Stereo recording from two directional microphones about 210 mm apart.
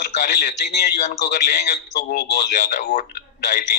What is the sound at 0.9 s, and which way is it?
Speech, 35° left (ahead or behind).